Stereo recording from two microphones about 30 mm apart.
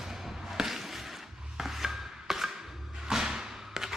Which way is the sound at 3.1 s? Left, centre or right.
Centre.